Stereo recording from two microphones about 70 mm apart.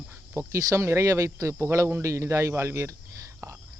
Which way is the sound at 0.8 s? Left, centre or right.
Right.